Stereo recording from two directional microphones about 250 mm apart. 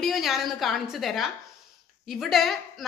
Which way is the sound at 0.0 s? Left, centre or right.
Centre.